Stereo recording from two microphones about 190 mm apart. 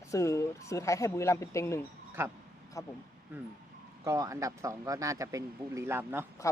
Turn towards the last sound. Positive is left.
turn(degrees=-10)  # may be behind; listen again after turning